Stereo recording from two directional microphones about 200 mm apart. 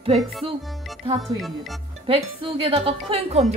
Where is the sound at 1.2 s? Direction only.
Centre (ahead or behind).